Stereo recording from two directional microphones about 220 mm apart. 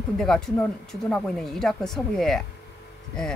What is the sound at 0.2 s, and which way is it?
Speech, centre (ahead or behind).